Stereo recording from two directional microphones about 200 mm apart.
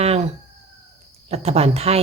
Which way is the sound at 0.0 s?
30° right (ahead or behind).